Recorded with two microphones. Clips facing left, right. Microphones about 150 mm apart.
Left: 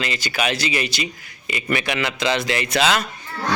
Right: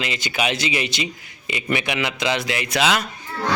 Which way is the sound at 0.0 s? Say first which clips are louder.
Even; 15° right (ahead or behind).